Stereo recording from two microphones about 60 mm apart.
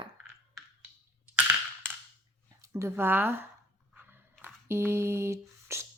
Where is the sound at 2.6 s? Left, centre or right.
Right.